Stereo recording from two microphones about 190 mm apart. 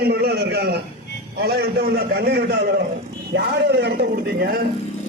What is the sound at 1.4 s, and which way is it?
A man's voice, 55° right (ahead or behind).